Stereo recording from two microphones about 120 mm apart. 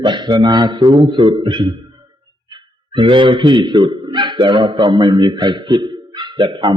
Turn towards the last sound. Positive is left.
turn(degrees=-40)  # may be behind; listen again after turning